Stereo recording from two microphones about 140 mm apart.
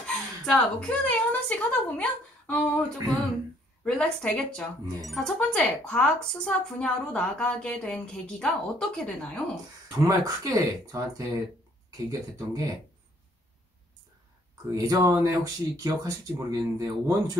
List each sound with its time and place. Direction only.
0.0 s a woman's voice: 5° left (ahead or behind)
9.8 s speech: 25° right (ahead or behind)
14.5 s speech: 25° right (ahead or behind)